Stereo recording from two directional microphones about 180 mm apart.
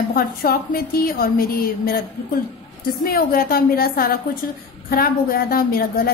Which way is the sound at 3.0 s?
55° left (ahead or behind).